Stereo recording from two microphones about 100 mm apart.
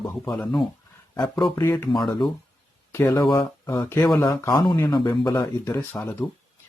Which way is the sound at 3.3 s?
30° left (ahead or behind).